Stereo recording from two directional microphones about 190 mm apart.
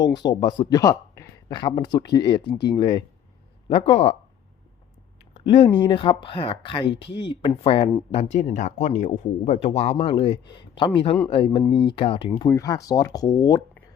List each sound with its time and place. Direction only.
0.0 s speech: 20° left (ahead or behind)
5.3 s speech: 30° left (ahead or behind)
6.9 s speech: 70° left (ahead or behind)
7.3 s speech: 30° left (ahead or behind)
12.4 s speech: 15° left (ahead or behind)